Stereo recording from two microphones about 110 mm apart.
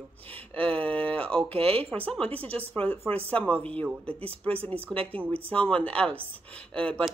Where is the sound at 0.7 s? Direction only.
15° left (ahead or behind).